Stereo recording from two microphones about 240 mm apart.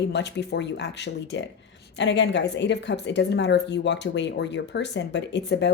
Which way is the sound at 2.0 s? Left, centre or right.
Left.